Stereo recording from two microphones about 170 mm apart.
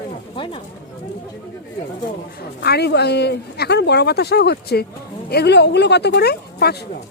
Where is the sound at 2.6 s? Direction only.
75° left (ahead or behind).